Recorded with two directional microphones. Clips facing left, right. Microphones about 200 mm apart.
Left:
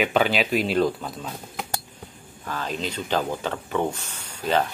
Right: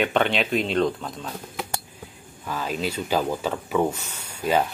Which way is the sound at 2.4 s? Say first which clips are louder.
Right 2 dB; 10° right (ahead or behind).